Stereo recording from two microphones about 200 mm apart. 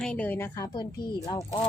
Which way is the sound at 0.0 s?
5° left (ahead or behind).